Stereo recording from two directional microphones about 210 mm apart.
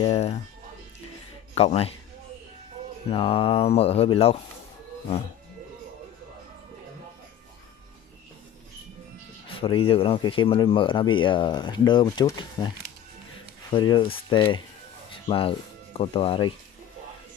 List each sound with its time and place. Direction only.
0.0 s speech: 30° left (ahead or behind)
1.5 s speech: 30° left (ahead or behind)
3.1 s speech: 25° left (ahead or behind)
9.5 s speech: 25° left (ahead or behind)